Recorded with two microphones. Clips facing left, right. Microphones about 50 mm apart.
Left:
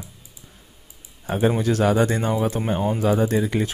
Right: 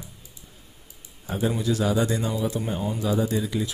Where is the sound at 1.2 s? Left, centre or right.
Left.